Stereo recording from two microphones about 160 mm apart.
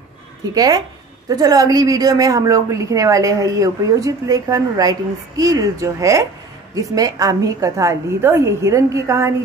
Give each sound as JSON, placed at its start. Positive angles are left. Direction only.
{"t": 0.6, "sound": "a woman's voice", "side_deg": -20}